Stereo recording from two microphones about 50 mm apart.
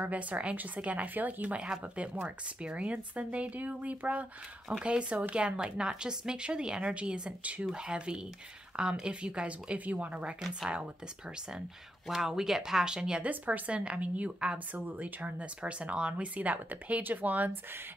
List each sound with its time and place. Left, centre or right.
0.0 s speech: right
1.6 s speech: right
13.2 s speech: right
15.4 s speech: right